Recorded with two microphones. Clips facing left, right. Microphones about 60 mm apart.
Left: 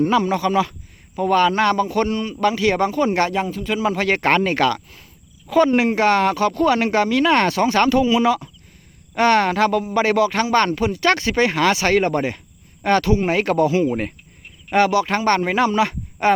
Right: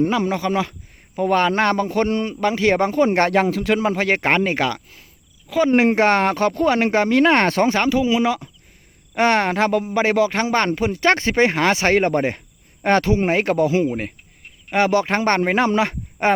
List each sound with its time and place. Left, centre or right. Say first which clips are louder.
0.0 s a man's voice: left 2 dB; right
3.3 s speech: right 5 dB; right
3.8 s speech: even; right
5.7 s a man's voice: right 1 dB; right
7.7 s a man's voice: left 2 dB; centre